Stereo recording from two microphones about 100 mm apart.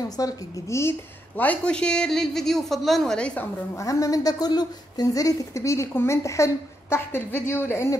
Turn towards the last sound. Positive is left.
turn(degrees=30)  # may be behind; listen again after turning